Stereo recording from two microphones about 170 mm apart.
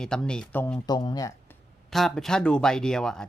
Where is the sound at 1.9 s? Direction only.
Centre (ahead or behind).